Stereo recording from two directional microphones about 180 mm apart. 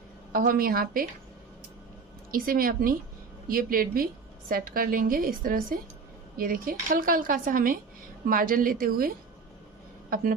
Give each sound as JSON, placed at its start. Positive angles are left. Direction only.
{"t": 0.3, "sound": "a woman's voice", "side_deg": -50}
{"t": 2.3, "sound": "a woman's voice", "side_deg": -55}